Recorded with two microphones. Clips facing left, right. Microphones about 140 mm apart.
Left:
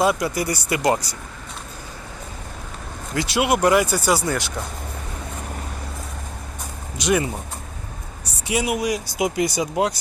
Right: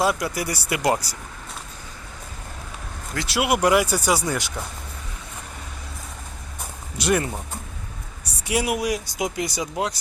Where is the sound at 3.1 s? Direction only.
Centre (ahead or behind).